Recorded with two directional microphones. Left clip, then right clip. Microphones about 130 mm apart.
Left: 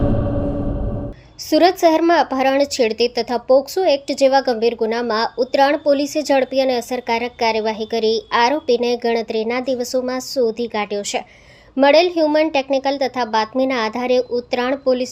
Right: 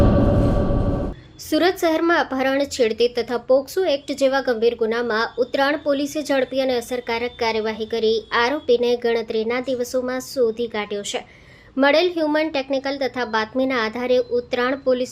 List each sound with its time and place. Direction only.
1.5 s speech: 40° left (ahead or behind)